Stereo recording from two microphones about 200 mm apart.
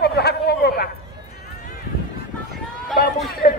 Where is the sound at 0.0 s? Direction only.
55° left (ahead or behind).